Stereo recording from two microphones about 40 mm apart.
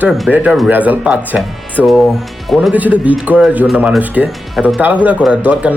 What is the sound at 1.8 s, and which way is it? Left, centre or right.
Speech, right.